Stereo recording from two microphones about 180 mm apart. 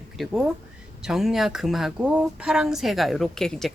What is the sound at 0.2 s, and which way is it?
Speech, centre (ahead or behind).